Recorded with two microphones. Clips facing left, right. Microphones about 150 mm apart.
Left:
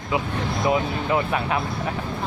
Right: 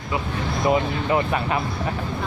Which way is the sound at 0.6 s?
Centre (ahead or behind).